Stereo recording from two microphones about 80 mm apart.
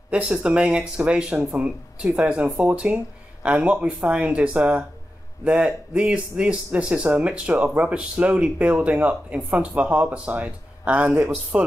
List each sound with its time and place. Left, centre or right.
0.1 s speech: centre